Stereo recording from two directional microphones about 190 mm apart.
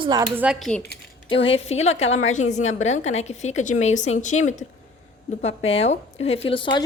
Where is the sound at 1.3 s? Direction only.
30° left (ahead or behind).